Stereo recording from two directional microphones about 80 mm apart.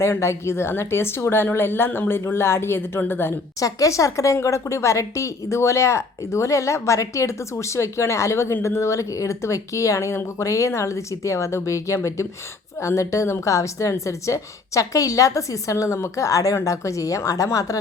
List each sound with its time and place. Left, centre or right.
0.0 s a woman's voice: left
3.6 s a woman's voice: left